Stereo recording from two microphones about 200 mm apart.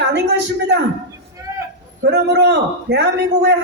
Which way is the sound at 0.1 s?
60° right (ahead or behind).